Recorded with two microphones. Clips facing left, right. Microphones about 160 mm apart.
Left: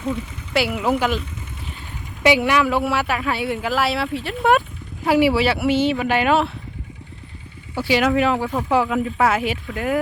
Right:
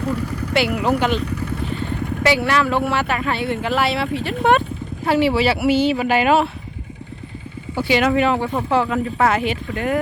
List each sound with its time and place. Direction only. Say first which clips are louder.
0.0 s speech: right 3 dB; 70° right (ahead or behind)
0.8 s speech: right 2 dB; 5° left (ahead or behind)
1.2 s vehicle: right 11 dB; 70° right (ahead or behind)
2.2 s speech: left 2 dB; 15° left (ahead or behind); by 6.5 s centre (ahead or behind)
7.8 s speech: right 1 dB; centre (ahead or behind)